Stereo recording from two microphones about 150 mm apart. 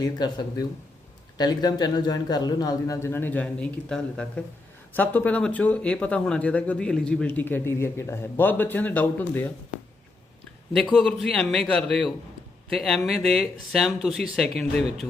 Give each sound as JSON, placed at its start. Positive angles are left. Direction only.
{"t": 0.0, "sound": "a man's voice", "side_deg": 25}
{"t": 10.9, "sound": "speech", "side_deg": 5}